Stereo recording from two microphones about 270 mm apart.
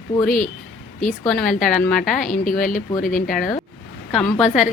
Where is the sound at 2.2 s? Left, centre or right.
Left.